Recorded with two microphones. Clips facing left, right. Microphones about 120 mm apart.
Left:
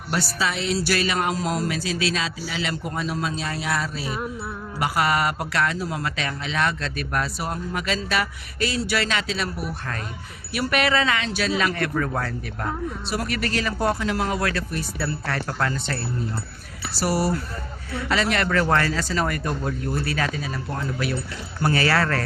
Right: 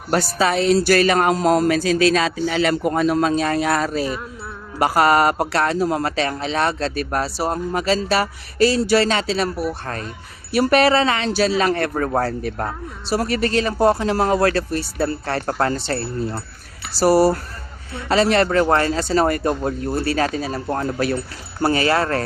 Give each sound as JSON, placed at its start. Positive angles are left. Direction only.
{"t": 0.1, "sound": "a man's voice", "side_deg": -45}
{"t": 21.6, "sound": "speech", "side_deg": -25}